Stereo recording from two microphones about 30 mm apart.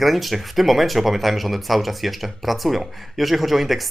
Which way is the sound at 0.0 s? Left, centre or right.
Centre.